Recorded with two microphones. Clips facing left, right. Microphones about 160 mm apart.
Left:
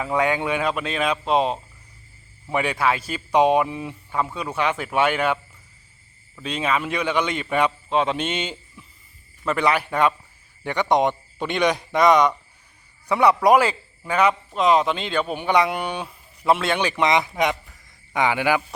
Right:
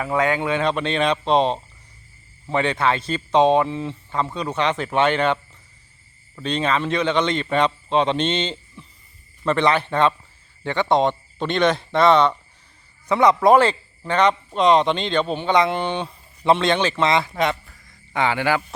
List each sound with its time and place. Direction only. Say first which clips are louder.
0.0 s a man's voice: right 1 dB; 15° left (ahead or behind)
6.4 s a man's voice: right 2 dB; 5° left (ahead or behind)
15.9 s speech: right 4 dB; 25° right (ahead or behind)
16.4 s a man's voice: right 2 dB; 5° left (ahead or behind)